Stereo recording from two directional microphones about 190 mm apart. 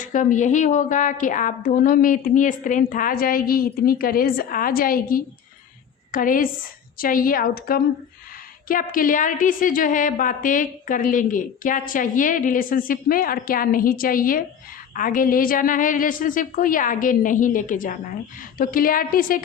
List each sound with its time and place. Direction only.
0.0 s a woman's voice: 40° left (ahead or behind)